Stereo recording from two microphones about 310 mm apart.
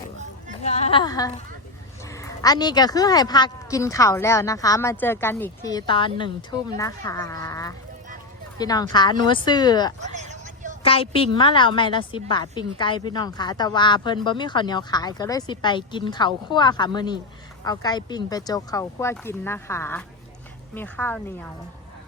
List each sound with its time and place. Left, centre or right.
0.6 s speech: left
10.0 s vehicle: right
10.8 s speech: centre